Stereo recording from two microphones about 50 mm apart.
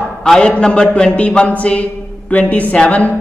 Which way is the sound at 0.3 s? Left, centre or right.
Centre.